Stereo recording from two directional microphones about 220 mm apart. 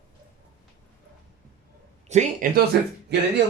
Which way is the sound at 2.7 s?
50° right (ahead or behind).